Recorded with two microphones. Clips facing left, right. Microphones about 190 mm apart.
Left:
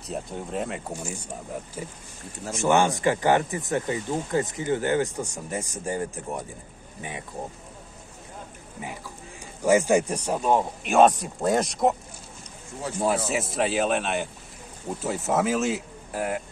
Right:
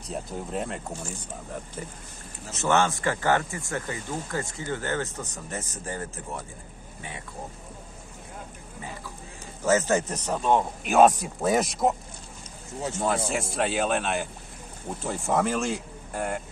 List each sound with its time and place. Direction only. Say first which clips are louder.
0.1 s speech: left 1 dB; centre (ahead or behind); by 7.2 s 20° left (ahead or behind)
9.6 s speech: left 3 dB; 15° left (ahead or behind)
13.3 s speech: left 2 dB; centre (ahead or behind)